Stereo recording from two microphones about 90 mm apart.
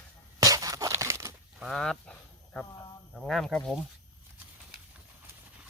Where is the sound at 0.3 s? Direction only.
40° right (ahead or behind).